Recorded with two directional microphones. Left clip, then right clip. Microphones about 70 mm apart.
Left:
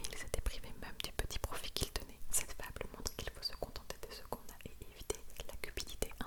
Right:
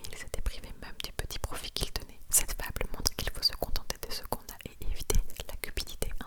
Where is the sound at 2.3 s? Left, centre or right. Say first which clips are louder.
Right 10 dB; right.